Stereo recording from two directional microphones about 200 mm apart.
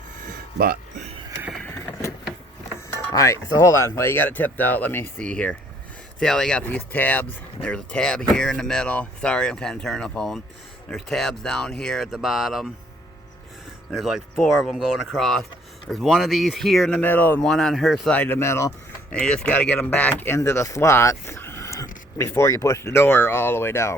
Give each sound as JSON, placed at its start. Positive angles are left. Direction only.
{"t": 0.3, "sound": "a sound", "side_deg": -45}
{"t": 1.5, "sound": "vehicle", "side_deg": 10}
{"t": 3.1, "sound": "speech", "side_deg": 15}
{"t": 13.9, "sound": "speech", "side_deg": 0}